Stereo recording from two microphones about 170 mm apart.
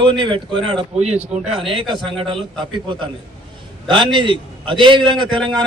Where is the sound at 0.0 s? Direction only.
30° right (ahead or behind).